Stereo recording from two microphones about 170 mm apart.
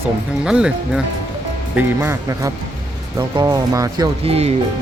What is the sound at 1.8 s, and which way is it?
Speech, 15° right (ahead or behind).